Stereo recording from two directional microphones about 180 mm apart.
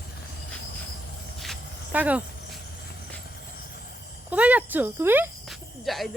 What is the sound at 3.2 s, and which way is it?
Vehicle, 60° left (ahead or behind).